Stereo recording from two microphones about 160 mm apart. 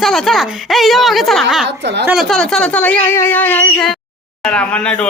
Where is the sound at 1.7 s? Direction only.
90° right.